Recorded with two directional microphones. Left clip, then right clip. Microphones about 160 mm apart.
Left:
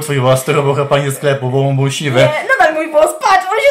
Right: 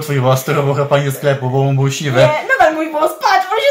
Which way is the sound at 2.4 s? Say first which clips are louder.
Left 1 dB; 15° left (ahead or behind).